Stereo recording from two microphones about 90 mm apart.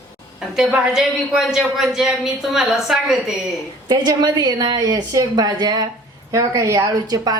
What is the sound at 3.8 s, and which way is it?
A woman's voice, 50° right (ahead or behind).